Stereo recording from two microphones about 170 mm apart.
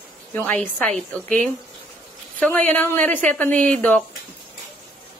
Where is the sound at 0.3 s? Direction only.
10° left (ahead or behind).